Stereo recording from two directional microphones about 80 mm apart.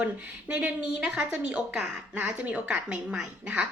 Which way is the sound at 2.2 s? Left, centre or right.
Centre.